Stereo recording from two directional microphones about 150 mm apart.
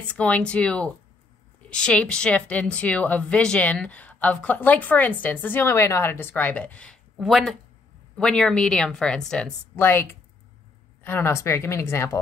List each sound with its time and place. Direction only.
0.1 s speech: 10° left (ahead or behind)